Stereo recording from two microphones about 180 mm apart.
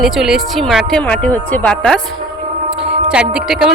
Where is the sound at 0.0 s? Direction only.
Centre (ahead or behind).